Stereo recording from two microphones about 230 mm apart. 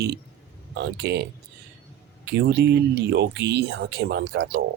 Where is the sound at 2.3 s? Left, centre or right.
Right.